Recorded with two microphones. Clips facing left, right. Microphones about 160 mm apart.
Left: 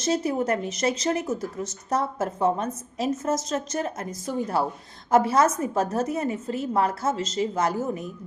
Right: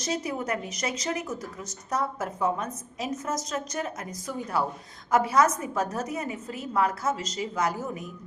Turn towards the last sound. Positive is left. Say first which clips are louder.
# left 4 dB
turn(degrees=30)  # may be behind; listen again after turning